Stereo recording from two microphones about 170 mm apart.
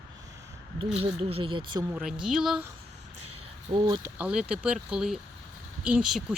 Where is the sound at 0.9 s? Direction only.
35° right (ahead or behind).